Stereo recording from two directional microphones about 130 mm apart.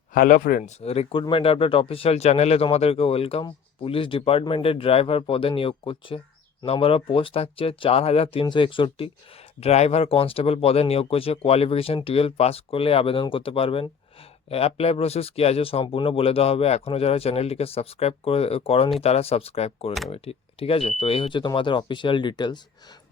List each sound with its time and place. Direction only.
0.1 s speech: 90° left
0.8 s speech: 50° left (ahead or behind)
9.6 s speech: 55° left (ahead or behind); by 22.6 s 35° left (ahead or behind)